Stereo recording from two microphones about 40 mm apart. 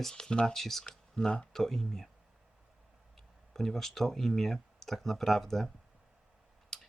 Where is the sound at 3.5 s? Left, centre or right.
Centre.